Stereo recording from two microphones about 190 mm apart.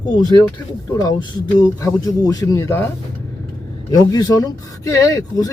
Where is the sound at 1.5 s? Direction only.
15° left (ahead or behind).